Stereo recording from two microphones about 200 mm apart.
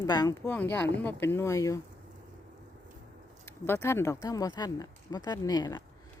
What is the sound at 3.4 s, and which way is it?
Speech, 15° left (ahead or behind).